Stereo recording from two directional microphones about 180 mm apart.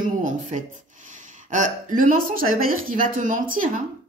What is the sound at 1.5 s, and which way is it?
A woman's voice, 45° right (ahead or behind).